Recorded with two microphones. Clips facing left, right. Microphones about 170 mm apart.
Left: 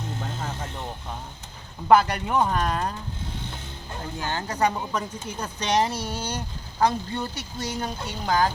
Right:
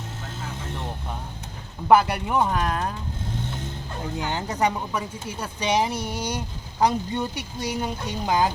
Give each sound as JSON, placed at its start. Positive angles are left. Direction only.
{"t": 1.9, "sound": "speech", "side_deg": -10}
{"t": 4.2, "sound": "speech", "side_deg": -20}
{"t": 4.9, "sound": "speech", "side_deg": -10}